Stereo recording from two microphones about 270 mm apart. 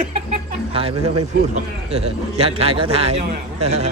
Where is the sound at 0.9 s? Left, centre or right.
Right.